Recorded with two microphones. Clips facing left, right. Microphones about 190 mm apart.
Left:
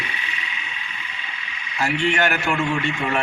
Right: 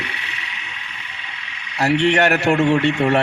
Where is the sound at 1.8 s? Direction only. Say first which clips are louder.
Right 5 dB; 70° right (ahead or behind).